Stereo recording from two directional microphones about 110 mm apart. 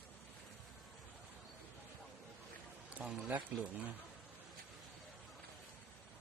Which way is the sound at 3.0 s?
5° right (ahead or behind).